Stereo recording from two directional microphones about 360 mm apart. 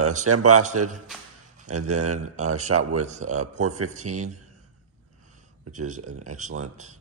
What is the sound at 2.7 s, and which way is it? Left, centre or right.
Speech, right.